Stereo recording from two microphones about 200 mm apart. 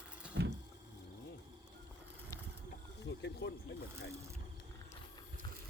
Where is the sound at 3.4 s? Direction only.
60° left (ahead or behind).